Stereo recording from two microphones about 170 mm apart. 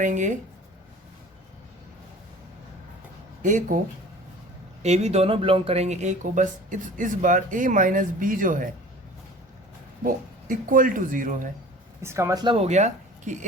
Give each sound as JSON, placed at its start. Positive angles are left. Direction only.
{"t": 0.0, "sound": "speech", "side_deg": -45}
{"t": 3.4, "sound": "speech", "side_deg": -50}
{"t": 4.8, "sound": "speech", "side_deg": -40}
{"t": 10.5, "sound": "speech", "side_deg": -50}
{"t": 12.0, "sound": "speech", "side_deg": -15}
{"t": 12.5, "sound": "speech", "side_deg": -40}